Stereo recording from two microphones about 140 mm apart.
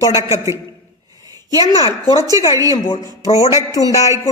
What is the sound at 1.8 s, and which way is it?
Speech, 25° right (ahead or behind).